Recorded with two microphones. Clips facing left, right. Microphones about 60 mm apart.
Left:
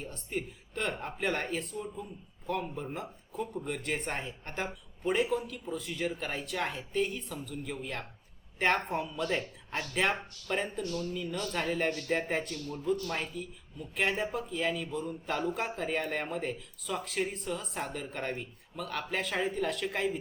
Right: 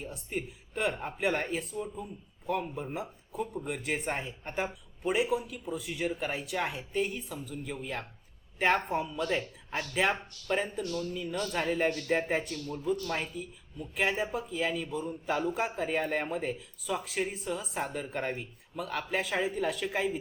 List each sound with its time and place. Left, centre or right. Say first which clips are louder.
0.0 s speech: even; centre